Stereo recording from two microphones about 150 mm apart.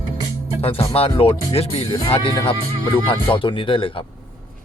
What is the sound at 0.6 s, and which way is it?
Speech, 40° left (ahead or behind).